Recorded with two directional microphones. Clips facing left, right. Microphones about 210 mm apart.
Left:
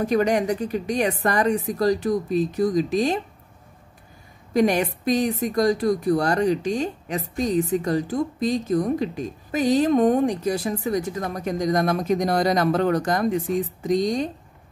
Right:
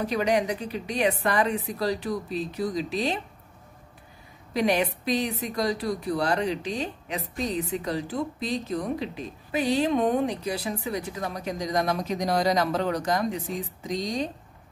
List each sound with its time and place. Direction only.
0.0 s speech: 45° left (ahead or behind)
4.6 s speech: 45° left (ahead or behind)